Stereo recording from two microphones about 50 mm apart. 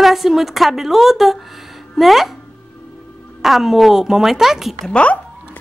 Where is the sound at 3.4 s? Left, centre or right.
Centre.